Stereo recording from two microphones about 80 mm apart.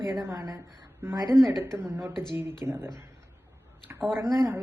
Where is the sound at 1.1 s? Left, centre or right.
Right.